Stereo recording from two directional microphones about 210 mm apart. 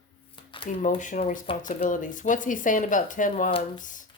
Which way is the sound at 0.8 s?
35° left (ahead or behind).